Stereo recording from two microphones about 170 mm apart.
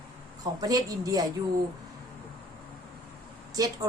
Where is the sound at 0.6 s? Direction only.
20° right (ahead or behind).